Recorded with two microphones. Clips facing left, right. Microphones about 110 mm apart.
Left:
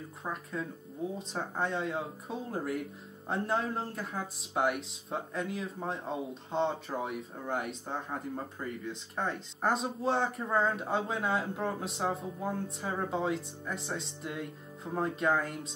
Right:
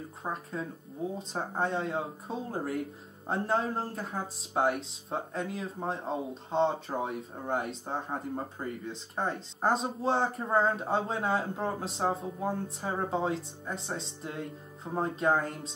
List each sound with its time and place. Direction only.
0.2 s speech: 35° right (ahead or behind)